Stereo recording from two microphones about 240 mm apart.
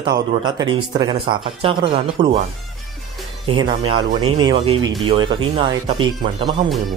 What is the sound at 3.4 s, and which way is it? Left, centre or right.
Speech, right.